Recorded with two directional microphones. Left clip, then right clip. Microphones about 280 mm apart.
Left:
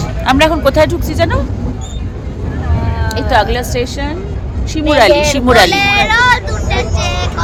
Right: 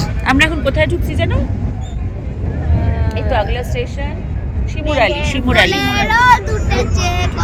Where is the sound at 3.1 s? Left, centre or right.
Left.